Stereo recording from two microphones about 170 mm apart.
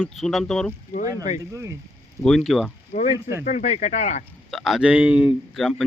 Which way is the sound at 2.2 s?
Centre (ahead or behind).